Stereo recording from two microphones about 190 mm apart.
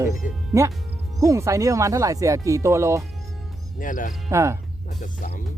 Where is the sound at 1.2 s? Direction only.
15° right (ahead or behind).